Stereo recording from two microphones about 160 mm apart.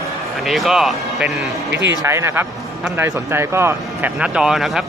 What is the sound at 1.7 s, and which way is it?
Speech, 90° right.